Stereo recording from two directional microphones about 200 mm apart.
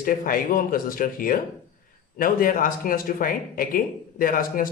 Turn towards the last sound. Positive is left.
turn(degrees=45)  # may be behind; listen again after turning